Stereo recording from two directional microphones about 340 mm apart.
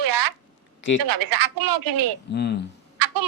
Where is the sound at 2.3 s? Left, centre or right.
Left.